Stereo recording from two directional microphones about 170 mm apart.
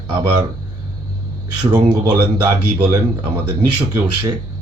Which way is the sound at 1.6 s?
25° right (ahead or behind).